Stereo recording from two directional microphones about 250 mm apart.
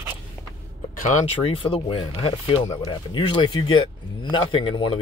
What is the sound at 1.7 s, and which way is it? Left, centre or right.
Speech, centre.